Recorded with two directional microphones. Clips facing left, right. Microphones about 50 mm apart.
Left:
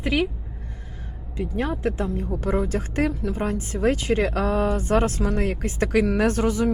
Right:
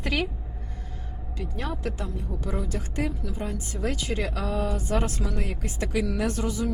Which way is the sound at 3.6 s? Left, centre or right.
Left.